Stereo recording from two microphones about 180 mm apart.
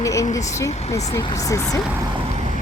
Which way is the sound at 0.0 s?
15° left (ahead or behind).